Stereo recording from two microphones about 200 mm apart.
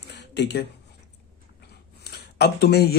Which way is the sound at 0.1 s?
60° left (ahead or behind).